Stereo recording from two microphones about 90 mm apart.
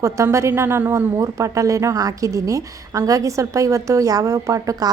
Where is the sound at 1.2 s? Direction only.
35° right (ahead or behind).